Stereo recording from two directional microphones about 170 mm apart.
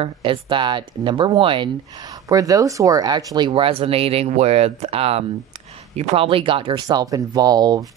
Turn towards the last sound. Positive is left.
turn(degrees=-20)  # may be behind; listen again after turning